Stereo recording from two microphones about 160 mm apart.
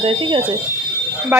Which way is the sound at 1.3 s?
15° right (ahead or behind).